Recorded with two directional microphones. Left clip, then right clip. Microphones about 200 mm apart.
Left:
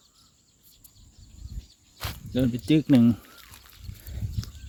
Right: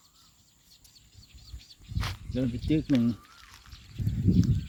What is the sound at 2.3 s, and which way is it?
Speech, 40° left (ahead or behind).